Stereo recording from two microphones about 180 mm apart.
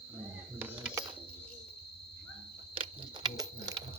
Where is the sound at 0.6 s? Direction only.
10° right (ahead or behind).